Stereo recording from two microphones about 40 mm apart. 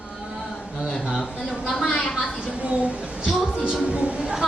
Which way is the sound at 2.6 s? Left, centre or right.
Right.